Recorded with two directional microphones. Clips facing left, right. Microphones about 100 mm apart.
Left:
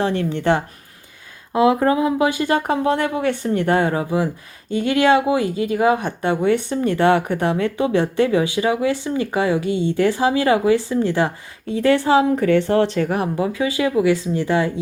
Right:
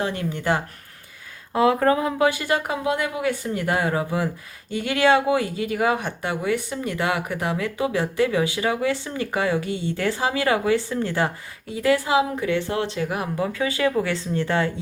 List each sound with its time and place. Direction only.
0.0 s speech: 30° left (ahead or behind)
1.5 s speech: 20° left (ahead or behind); by 13.2 s 40° left (ahead or behind)
13.3 s speech: 20° left (ahead or behind)